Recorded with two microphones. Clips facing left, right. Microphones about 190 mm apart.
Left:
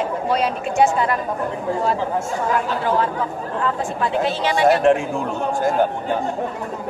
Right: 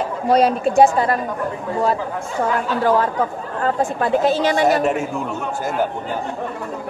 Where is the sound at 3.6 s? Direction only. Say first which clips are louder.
Right 4 dB; 45° right (ahead or behind).